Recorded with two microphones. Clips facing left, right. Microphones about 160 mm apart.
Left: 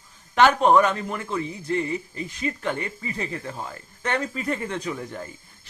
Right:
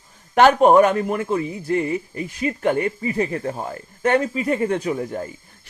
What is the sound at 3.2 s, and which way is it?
Speech, 45° right (ahead or behind).